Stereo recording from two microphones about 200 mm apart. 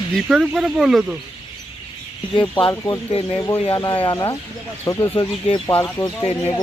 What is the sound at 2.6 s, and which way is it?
Speech, 25° left (ahead or behind).